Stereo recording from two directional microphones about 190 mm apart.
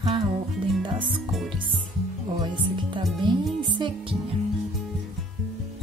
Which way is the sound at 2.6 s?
25° right (ahead or behind).